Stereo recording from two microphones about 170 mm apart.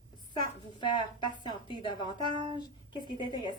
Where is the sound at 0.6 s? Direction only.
25° left (ahead or behind).